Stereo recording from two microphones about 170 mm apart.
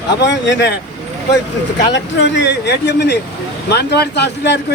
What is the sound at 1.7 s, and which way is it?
Speech, 90° left.